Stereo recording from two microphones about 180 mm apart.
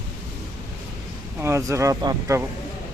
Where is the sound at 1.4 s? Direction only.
15° right (ahead or behind).